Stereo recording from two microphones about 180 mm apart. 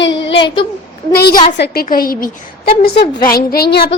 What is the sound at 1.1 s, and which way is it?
A woman's voice, 60° left (ahead or behind).